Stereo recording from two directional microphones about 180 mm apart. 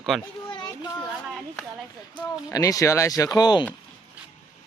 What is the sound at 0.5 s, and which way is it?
Children playing, 25° left (ahead or behind).